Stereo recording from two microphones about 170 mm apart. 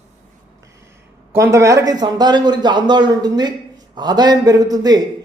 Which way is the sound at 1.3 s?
15° right (ahead or behind).